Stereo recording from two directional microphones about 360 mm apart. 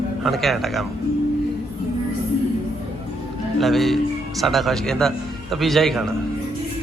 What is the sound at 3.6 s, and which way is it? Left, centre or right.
A man's voice, centre.